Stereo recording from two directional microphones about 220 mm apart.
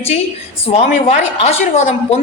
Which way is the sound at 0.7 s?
30° left (ahead or behind).